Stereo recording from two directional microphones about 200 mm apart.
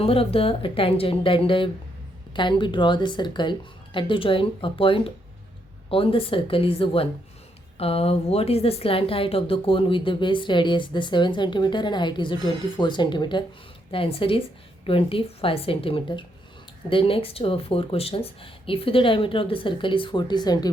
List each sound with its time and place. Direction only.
0.0 s a woman's voice: 30° left (ahead or behind)